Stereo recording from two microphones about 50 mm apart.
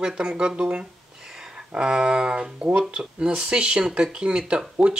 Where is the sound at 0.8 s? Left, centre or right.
Centre.